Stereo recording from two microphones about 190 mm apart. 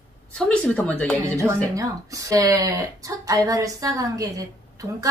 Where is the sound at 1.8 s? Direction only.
15° right (ahead or behind).